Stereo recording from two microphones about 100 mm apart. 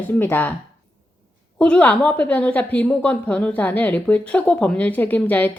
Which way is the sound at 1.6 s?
15° left (ahead or behind).